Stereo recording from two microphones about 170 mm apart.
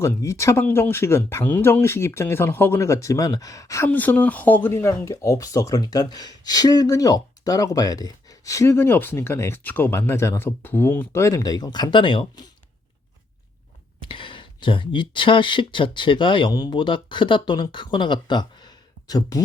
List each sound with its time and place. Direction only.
0.0 s speech: 20° left (ahead or behind)
14.0 s speech: 30° left (ahead or behind)